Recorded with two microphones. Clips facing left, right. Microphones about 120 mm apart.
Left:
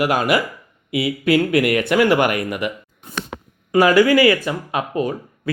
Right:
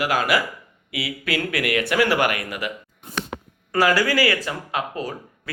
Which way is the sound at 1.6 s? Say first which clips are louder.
Left 4 dB; 40° left (ahead or behind).